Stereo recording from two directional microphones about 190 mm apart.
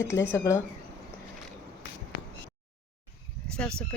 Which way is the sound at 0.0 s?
15° left (ahead or behind).